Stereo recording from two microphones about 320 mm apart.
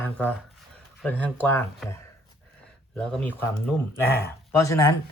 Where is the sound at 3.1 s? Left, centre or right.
Centre.